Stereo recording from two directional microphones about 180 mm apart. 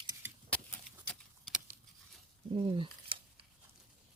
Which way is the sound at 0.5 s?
5° left (ahead or behind).